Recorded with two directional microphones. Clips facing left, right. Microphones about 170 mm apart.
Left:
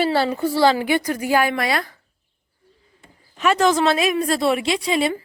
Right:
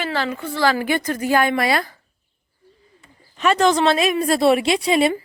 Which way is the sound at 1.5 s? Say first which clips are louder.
Right 3 dB; centre (ahead or behind).